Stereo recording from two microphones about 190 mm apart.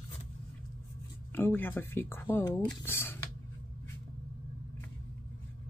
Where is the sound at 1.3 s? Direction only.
10° left (ahead or behind).